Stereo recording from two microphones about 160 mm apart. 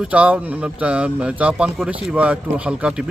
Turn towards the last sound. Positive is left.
turn(degrees=-5)  # may be behind; listen again after turning